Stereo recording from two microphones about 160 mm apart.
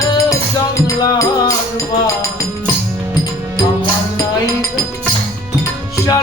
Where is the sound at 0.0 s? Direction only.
20° left (ahead or behind).